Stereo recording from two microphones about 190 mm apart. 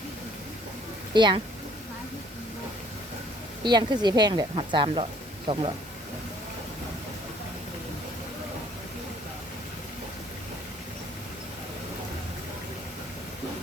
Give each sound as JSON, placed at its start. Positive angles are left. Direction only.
{"t": 1.1, "sound": "speech", "side_deg": -25}
{"t": 3.6, "sound": "a woman's voice", "side_deg": -20}